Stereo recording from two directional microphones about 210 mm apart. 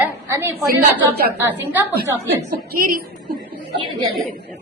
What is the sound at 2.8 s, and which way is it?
Speech, 45° right (ahead or behind).